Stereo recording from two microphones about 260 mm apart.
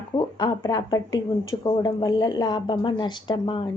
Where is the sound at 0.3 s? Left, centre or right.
Centre.